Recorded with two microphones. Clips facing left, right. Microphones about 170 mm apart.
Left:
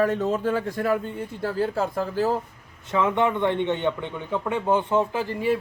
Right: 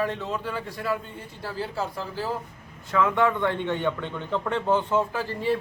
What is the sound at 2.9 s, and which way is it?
A man's voice, 20° left (ahead or behind).